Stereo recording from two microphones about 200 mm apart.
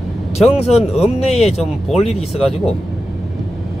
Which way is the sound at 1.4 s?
30° left (ahead or behind).